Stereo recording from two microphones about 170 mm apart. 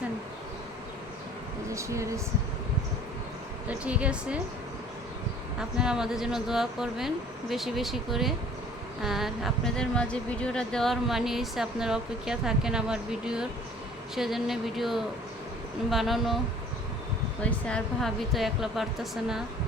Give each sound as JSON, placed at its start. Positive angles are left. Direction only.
{"t": 1.7, "sound": "speech", "side_deg": -15}
{"t": 3.7, "sound": "speech", "side_deg": -5}
{"t": 5.5, "sound": "speech", "side_deg": -5}
{"t": 17.4, "sound": "speech", "side_deg": 5}